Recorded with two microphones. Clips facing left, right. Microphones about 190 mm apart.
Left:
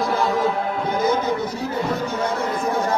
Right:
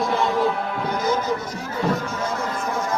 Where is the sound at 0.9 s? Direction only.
55° left (ahead or behind).